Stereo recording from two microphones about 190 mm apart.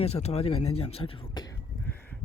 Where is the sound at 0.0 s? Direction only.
35° left (ahead or behind).